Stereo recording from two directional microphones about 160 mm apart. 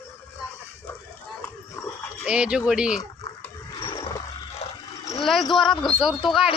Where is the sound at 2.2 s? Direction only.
5° right (ahead or behind).